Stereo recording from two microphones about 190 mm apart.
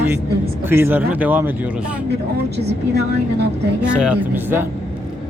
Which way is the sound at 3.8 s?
5° right (ahead or behind).